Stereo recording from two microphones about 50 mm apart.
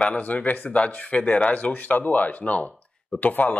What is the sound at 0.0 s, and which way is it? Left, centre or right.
Speech, left.